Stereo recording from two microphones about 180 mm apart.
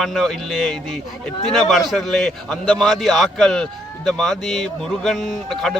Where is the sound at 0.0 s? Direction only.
Centre (ahead or behind).